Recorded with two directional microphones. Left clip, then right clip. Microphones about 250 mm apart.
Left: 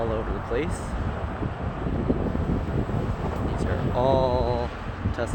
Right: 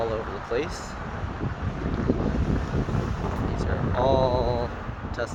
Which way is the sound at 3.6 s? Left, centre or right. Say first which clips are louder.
Left 1 dB; centre.